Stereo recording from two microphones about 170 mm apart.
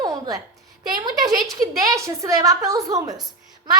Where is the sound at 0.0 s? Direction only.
20° right (ahead or behind).